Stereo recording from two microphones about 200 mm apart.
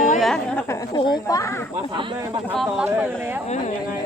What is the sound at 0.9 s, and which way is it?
Speech, 20° left (ahead or behind).